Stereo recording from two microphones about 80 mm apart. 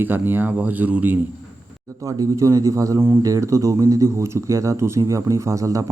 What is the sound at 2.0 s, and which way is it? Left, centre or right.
Speech, right.